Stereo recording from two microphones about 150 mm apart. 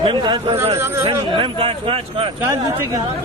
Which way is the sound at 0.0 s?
30° right (ahead or behind).